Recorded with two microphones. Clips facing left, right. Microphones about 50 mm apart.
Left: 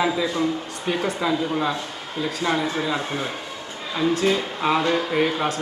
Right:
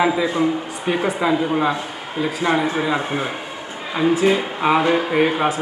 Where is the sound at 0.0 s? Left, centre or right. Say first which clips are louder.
Right 4 dB; right.